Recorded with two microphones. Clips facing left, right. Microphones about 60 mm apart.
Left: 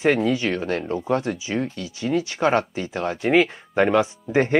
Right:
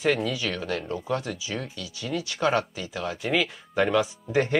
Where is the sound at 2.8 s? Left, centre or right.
Left.